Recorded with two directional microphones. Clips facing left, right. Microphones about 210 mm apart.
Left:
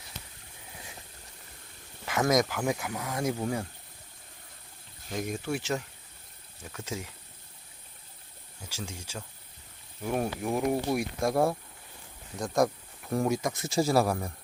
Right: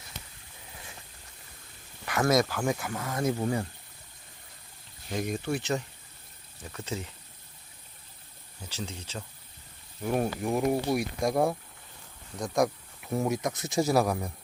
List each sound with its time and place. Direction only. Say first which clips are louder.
2.0 s speech: right 1 dB; 15° left (ahead or behind); by 3.7 s centre (ahead or behind)
5.1 s speech: right 2 dB; 5° left (ahead or behind)
6.8 s speech: right 1 dB; 10° left (ahead or behind)
8.9 s speech: right 1 dB; 10° left (ahead or behind)
10.0 s speech: right 2 dB; centre (ahead or behind)
12.4 s speech: even; centre (ahead or behind)